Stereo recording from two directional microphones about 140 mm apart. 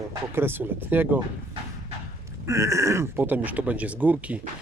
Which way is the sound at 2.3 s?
20° right (ahead or behind).